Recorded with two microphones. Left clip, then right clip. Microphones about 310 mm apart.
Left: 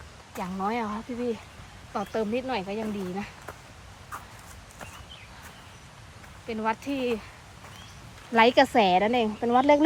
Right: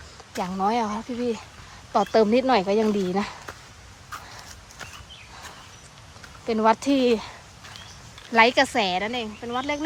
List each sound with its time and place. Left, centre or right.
0.3 s speech: centre
6.5 s speech: centre
8.3 s speech: centre